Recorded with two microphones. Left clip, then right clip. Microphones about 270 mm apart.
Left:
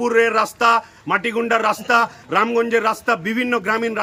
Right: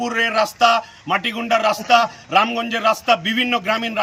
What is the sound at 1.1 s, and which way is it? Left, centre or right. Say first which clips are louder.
A man's voice: even; centre.